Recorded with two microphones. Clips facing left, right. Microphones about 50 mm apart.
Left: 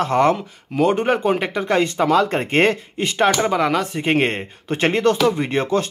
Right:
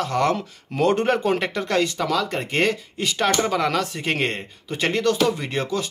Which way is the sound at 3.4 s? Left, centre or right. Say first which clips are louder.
Left 3 dB; centre.